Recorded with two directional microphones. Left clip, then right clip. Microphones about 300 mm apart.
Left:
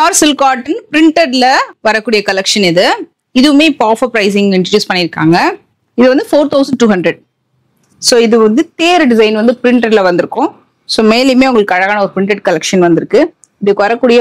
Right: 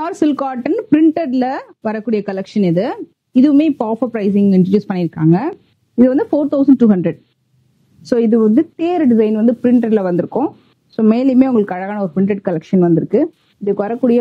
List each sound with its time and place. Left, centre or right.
0.0 s a woman's voice: centre
6.3 s speech: left
6.6 s a woman's voice: centre